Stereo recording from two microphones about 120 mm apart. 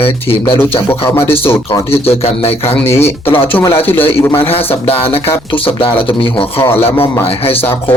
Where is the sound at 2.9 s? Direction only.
20° left (ahead or behind).